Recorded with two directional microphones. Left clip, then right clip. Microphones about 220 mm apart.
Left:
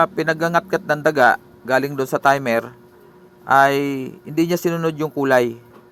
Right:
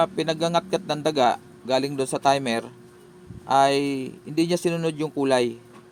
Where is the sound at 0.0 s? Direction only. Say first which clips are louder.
Left 5 dB; 15° left (ahead or behind).